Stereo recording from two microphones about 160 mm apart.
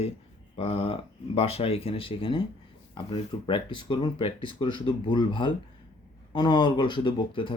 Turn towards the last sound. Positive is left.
turn(degrees=30)  # may be behind; listen again after turning